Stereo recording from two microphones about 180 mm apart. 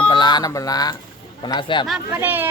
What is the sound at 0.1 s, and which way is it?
Speech, 25° left (ahead or behind).